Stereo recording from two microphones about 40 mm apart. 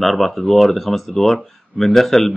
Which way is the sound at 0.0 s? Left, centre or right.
Centre.